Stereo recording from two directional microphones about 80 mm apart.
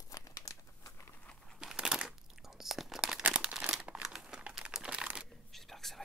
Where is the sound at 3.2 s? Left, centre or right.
Centre.